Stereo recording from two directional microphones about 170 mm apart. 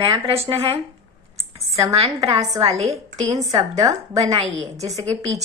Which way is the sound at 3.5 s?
25° right (ahead or behind).